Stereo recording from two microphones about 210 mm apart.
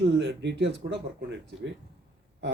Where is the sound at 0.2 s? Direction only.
60° right (ahead or behind).